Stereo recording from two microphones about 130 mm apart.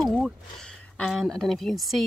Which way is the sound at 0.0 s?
5° left (ahead or behind).